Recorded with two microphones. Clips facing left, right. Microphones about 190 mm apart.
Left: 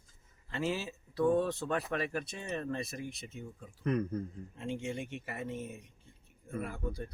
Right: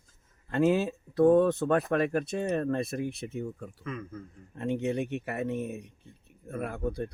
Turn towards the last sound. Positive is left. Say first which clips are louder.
# right 7 dB
turn(degrees=-60)  # may be behind; listen again after turning